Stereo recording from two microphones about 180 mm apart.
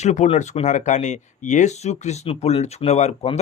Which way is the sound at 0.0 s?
40° left (ahead or behind).